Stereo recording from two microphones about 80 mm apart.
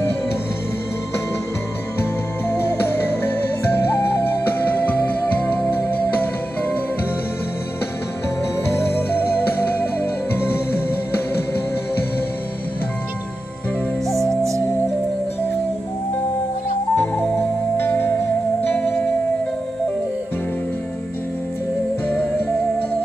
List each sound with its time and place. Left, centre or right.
2.5 s music: left
8.6 s music: left
11.1 s music: left
16.9 s music: left